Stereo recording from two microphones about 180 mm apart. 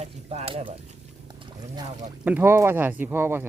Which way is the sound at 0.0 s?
35° right (ahead or behind).